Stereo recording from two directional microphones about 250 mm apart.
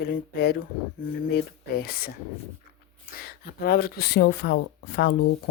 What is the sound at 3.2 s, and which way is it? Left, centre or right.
Speech, left.